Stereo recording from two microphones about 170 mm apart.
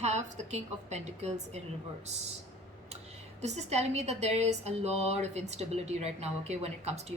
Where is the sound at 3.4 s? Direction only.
40° right (ahead or behind).